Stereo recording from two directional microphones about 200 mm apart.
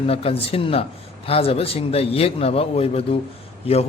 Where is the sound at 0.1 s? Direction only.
30° left (ahead or behind).